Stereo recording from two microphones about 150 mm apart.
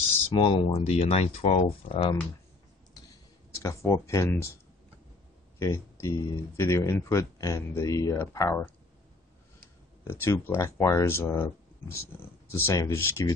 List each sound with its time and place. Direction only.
0.3 s speech: 35° left (ahead or behind)
3.5 s speech: 20° left (ahead or behind)
5.6 s speech: 20° left (ahead or behind)
10.0 s speech: 15° left (ahead or behind)